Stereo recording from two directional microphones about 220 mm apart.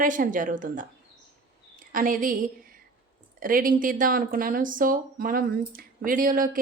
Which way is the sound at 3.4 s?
40° right (ahead or behind).